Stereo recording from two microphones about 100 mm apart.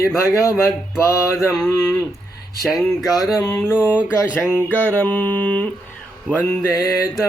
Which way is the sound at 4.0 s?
10° right (ahead or behind).